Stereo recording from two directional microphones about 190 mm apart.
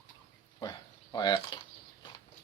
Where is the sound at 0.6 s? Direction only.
20° left (ahead or behind).